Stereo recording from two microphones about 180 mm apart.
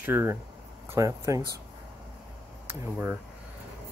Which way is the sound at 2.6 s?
10° right (ahead or behind).